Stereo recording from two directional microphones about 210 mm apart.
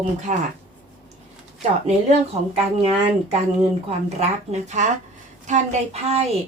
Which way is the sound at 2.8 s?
30° right (ahead or behind).